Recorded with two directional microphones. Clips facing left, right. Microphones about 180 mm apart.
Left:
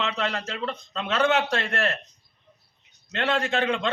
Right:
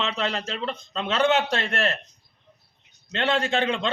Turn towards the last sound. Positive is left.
turn(degrees=-30)  # may be behind; listen again after turning